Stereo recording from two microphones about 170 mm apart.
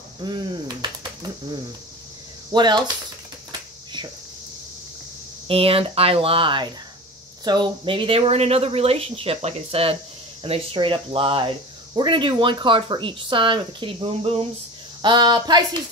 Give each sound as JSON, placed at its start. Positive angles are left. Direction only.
{"t": 0.2, "sound": "speech", "side_deg": -25}
{"t": 5.5, "sound": "speech", "side_deg": -35}